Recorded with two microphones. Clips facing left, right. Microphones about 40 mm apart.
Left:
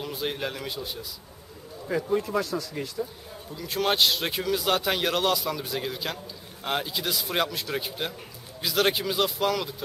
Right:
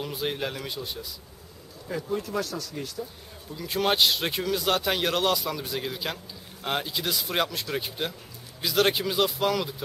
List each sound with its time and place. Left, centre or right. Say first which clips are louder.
0.0 s speech: even; centre
1.9 s a man's voice: left 4 dB; centre
3.5 s speech: even; centre